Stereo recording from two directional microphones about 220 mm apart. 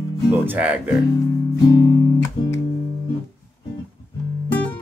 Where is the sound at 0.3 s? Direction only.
5° right (ahead or behind).